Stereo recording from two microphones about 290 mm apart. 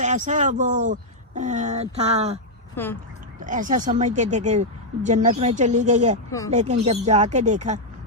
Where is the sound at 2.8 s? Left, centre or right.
Centre.